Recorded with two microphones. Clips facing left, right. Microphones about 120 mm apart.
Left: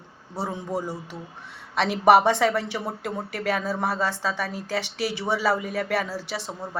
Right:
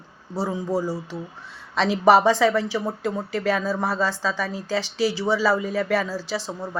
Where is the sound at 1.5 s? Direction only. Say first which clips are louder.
Right 2 dB; 60° left (ahead or behind).